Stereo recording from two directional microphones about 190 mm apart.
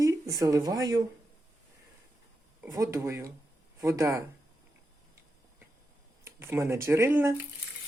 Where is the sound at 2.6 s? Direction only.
15° right (ahead or behind).